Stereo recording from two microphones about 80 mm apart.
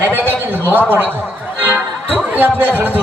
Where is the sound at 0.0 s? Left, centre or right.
Right.